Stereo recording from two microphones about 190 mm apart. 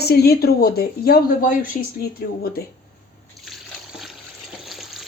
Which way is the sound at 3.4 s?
Centre (ahead or behind).